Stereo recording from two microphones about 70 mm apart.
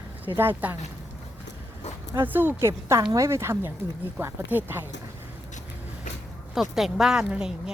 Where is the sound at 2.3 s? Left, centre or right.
Right.